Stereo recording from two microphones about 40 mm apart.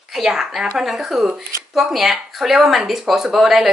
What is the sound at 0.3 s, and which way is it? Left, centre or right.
Speech, centre.